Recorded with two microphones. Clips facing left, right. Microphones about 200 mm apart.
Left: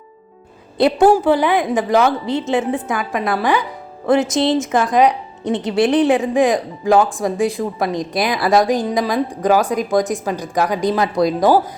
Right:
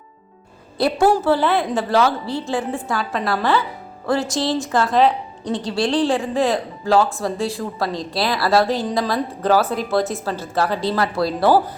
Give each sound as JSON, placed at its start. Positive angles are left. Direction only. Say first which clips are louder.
{"t": 0.8, "sound": "a woman's voice", "louder": "left 4 dB", "side_deg": 20}